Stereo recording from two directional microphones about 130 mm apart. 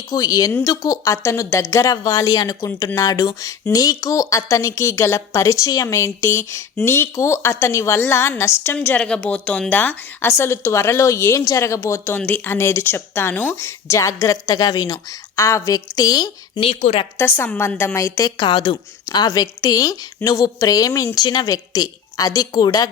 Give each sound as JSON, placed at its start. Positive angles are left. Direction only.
{"t": 0.1, "sound": "a woman's voice", "side_deg": 30}
{"t": 17.2, "sound": "a woman's voice", "side_deg": 15}
{"t": 18.3, "sound": "speech", "side_deg": 35}